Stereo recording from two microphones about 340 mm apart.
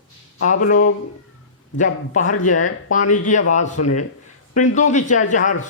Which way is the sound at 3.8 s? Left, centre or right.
Left.